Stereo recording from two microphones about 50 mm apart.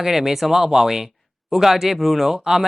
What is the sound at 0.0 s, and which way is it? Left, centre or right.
Speech, centre.